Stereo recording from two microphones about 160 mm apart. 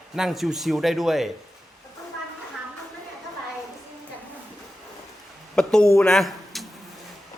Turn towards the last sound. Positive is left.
turn(degrees=0)  # may be behind; listen again after turning